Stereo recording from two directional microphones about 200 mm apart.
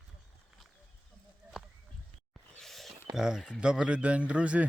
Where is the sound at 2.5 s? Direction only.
Centre (ahead or behind).